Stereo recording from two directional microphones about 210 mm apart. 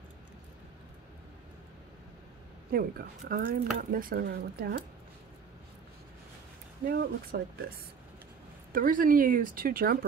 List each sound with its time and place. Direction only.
2.7 s speech: 45° right (ahead or behind)
6.9 s speech: 50° right (ahead or behind)
8.7 s speech: 40° right (ahead or behind)